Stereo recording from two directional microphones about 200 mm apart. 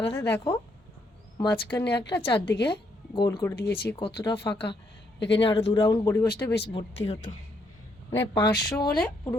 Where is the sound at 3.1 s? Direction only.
20° left (ahead or behind).